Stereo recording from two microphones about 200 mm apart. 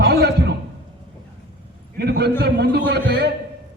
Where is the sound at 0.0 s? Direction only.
55° right (ahead or behind).